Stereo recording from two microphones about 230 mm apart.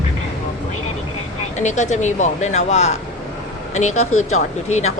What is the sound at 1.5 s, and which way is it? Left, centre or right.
Speech, left.